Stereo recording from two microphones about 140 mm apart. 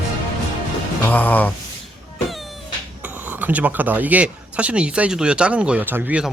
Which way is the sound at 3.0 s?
10° right (ahead or behind).